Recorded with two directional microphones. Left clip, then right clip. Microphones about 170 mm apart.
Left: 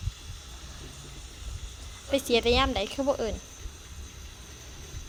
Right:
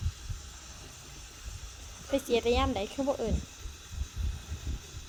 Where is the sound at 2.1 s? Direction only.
Centre (ahead or behind).